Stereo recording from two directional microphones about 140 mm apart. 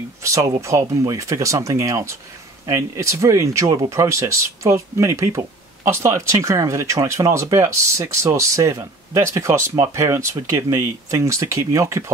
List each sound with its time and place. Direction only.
0.2 s speech: 20° right (ahead or behind)